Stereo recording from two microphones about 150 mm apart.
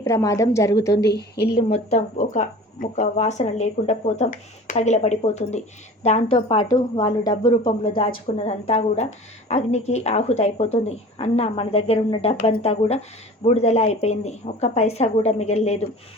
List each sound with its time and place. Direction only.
0.0 s a woman's voice: 20° left (ahead or behind)
1.5 s speech: 45° left (ahead or behind)
2.2 s speech: 55° left (ahead or behind); by 6.7 s 40° left (ahead or behind)
6.7 s a woman's voice: 25° left (ahead or behind); by 15.9 s 45° left (ahead or behind)